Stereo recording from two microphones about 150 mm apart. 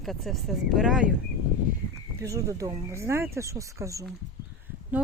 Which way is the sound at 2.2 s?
20° right (ahead or behind).